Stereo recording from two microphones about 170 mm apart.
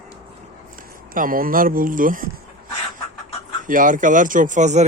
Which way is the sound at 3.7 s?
50° right (ahead or behind).